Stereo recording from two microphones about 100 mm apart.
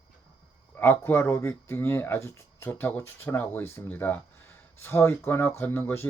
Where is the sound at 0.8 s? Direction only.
20° left (ahead or behind).